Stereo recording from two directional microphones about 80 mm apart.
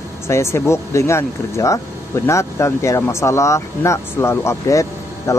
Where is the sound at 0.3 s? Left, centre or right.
Left.